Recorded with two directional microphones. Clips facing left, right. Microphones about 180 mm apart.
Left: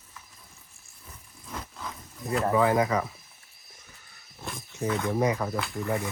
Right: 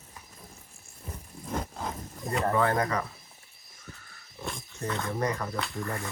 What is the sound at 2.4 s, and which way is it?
Speech, 5° left (ahead or behind).